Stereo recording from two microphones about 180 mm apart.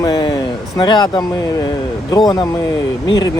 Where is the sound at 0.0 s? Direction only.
25° left (ahead or behind).